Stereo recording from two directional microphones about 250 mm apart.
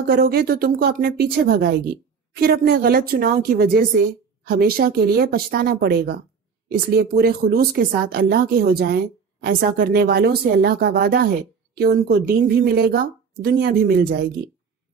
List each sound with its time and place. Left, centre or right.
0.1 s speech: right